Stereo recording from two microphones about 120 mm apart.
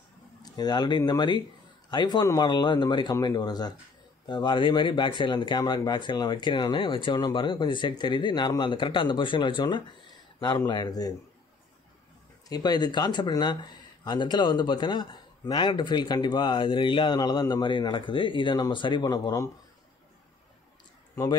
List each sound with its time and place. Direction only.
0.4 s speech: 35° left (ahead or behind)
12.4 s speech: 35° left (ahead or behind)